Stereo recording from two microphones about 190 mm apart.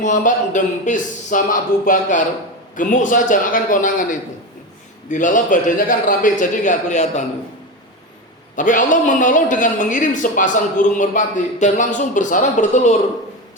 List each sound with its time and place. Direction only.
0.0 s a man's voice: 40° left (ahead or behind)
8.5 s a man's voice: 45° left (ahead or behind)